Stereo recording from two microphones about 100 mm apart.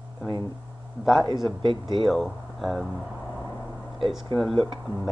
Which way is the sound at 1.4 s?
50° right (ahead or behind).